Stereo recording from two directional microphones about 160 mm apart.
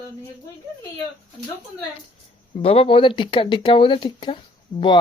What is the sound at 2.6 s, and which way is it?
Speech, 35° left (ahead or behind).